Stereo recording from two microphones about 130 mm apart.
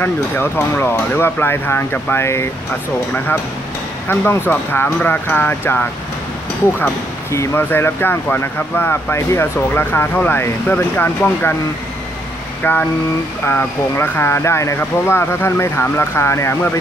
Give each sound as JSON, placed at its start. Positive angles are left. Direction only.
{"t": 0.0, "sound": "speech", "side_deg": 15}
{"t": 4.1, "sound": "speech", "side_deg": 15}
{"t": 12.6, "sound": "speech", "side_deg": 15}